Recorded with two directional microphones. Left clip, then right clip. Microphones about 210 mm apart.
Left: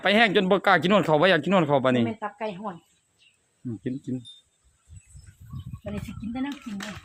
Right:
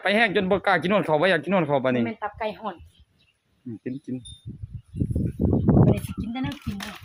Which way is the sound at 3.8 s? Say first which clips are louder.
Even; 15° left (ahead or behind).